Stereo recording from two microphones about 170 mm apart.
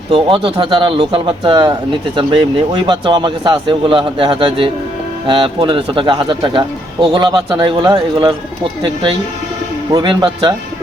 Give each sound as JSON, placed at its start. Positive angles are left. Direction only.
{"t": 0.1, "sound": "speech", "side_deg": -30}